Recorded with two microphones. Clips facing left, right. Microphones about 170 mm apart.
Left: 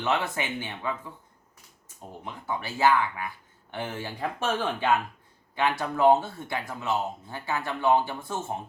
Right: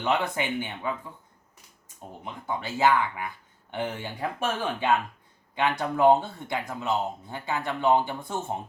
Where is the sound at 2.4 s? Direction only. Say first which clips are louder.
Even; 20° right (ahead or behind).